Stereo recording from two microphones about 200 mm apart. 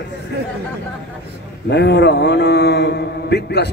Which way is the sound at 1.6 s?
55° left (ahead or behind).